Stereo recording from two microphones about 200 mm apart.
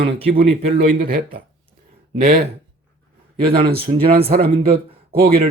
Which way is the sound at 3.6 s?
50° right (ahead or behind).